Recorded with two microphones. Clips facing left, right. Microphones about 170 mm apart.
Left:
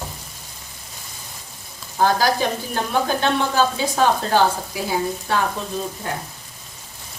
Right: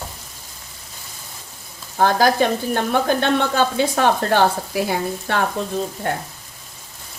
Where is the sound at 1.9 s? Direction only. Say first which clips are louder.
Right 2 dB; 55° right (ahead or behind).